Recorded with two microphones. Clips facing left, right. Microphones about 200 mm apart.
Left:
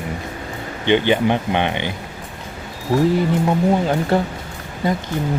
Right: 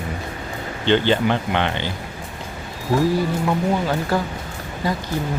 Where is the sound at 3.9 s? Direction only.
25° left (ahead or behind).